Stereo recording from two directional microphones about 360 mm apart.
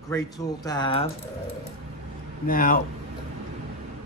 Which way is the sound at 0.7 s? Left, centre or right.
Centre.